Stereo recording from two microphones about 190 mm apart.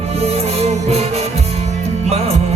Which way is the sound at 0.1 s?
35° right (ahead or behind).